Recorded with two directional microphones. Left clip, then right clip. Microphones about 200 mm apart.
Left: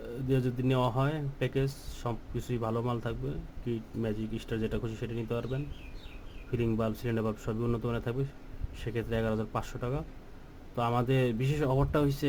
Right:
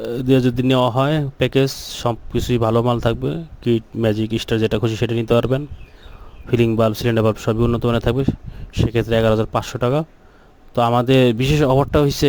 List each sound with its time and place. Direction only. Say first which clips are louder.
0.0 s speech: right 15 dB; 45° right (ahead or behind)